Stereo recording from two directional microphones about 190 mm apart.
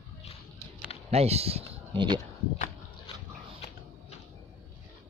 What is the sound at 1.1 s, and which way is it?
Speech, 35° right (ahead or behind).